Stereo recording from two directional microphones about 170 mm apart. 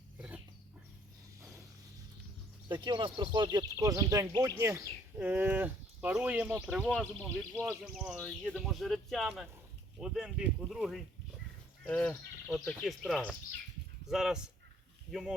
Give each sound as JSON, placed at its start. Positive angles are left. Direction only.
{"t": 0.2, "sound": "a sound", "side_deg": -10}
{"t": 2.6, "sound": "speech", "side_deg": -25}
{"t": 6.8, "sound": "speech", "side_deg": 5}